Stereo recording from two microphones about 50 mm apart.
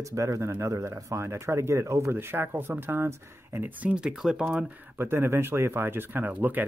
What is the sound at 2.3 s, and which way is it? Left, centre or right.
Speech, right.